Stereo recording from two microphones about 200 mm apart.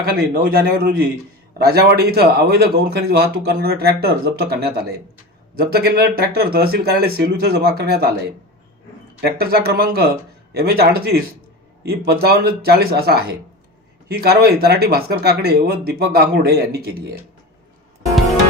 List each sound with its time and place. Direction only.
0.0 s speech: 50° right (ahead or behind)
9.2 s speech: 50° right (ahead or behind)